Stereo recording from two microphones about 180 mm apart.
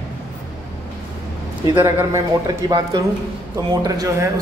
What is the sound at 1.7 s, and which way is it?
Speech, 15° right (ahead or behind).